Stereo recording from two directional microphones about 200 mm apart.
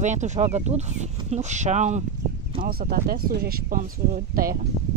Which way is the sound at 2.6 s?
50° right (ahead or behind).